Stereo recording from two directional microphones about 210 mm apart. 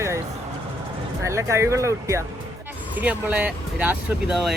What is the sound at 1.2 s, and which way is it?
Speech, 15° right (ahead or behind).